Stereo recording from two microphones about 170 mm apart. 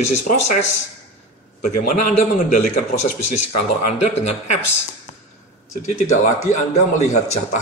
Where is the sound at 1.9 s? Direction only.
45° left (ahead or behind).